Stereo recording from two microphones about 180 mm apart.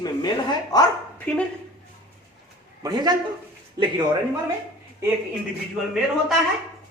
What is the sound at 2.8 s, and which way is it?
Speech, 25° right (ahead or behind).